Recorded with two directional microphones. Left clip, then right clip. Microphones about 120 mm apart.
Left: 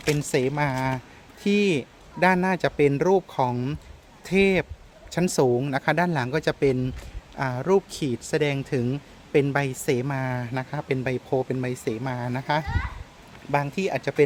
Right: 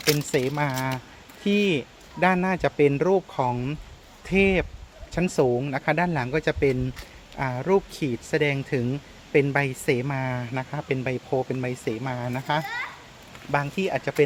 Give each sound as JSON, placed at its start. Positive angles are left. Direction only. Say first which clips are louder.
{"t": 0.2, "sound": "speech", "louder": "left 1 dB", "side_deg": 30}
{"t": 5.1, "sound": "speech", "louder": "left 1 dB", "side_deg": 45}